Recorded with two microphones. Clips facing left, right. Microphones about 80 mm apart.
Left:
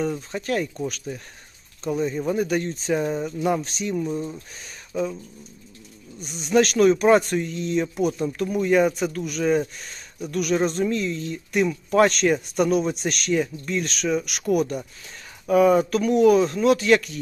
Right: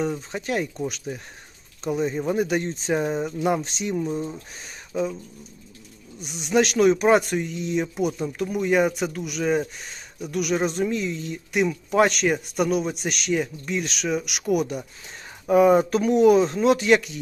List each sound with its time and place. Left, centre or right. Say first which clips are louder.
0.0 s speech: even; centre
6.2 s speech: left 2 dB; centre
15.4 s speech: right 1 dB; right